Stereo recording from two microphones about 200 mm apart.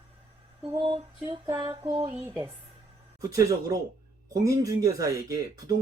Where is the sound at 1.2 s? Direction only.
20° right (ahead or behind).